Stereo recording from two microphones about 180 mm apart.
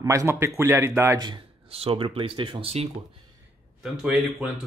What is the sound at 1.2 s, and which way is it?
Speech, 30° right (ahead or behind).